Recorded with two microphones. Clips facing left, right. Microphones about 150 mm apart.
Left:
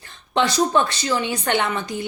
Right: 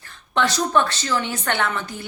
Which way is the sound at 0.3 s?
15° left (ahead or behind).